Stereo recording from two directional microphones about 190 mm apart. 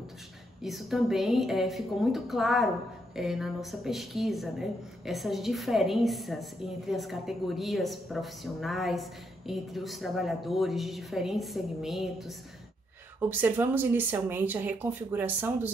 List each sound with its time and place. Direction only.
0.6 s a woman's voice: centre (ahead or behind)